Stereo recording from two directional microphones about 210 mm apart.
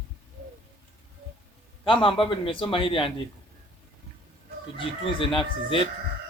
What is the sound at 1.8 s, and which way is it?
Speech, 25° left (ahead or behind).